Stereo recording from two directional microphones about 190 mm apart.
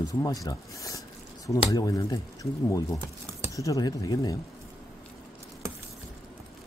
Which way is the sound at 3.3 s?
15° left (ahead or behind).